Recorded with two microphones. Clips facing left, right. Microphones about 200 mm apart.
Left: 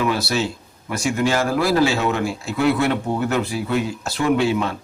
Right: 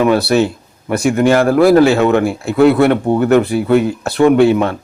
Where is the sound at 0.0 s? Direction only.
60° right (ahead or behind).